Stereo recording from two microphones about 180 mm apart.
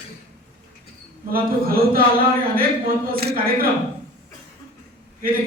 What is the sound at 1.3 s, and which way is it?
Speech, 55° right (ahead or behind).